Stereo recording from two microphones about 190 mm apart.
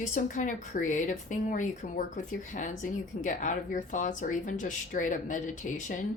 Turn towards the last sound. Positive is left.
turn(degrees=40)  # may be behind; listen again after turning